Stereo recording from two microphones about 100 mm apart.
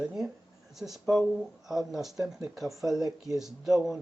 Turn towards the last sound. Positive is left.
turn(degrees=-5)  # may be behind; listen again after turning